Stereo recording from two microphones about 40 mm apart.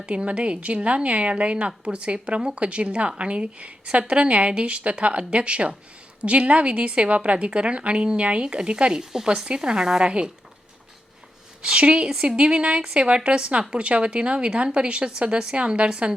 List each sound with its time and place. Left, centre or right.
0.0 s a woman's voice: right
11.6 s a woman's voice: right